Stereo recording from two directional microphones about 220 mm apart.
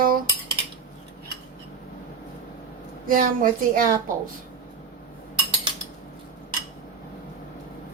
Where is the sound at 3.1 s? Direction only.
40° right (ahead or behind).